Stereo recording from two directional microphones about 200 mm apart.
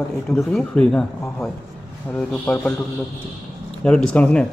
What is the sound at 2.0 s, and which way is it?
Speech, 5° left (ahead or behind).